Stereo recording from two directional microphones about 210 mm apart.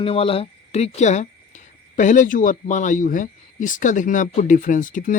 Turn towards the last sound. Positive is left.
turn(degrees=40)  # may be behind; listen again after turning